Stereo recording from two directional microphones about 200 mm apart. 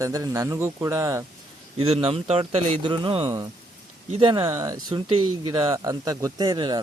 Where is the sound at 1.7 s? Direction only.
30° right (ahead or behind).